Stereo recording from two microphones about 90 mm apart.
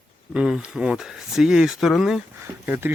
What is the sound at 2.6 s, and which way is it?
Speech, 25° right (ahead or behind).